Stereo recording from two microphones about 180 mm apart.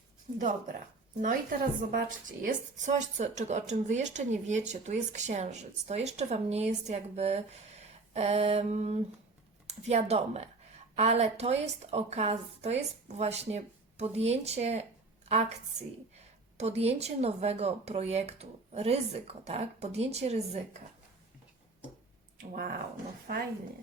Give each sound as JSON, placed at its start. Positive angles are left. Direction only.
{"t": 1.2, "sound": "a woman's voice", "side_deg": -50}
{"t": 23.2, "sound": "speech", "side_deg": -55}